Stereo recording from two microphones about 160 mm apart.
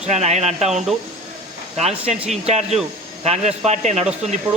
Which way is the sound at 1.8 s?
40° right (ahead or behind).